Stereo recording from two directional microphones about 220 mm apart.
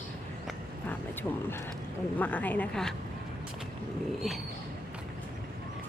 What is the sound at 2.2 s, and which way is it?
Speech, 5° left (ahead or behind).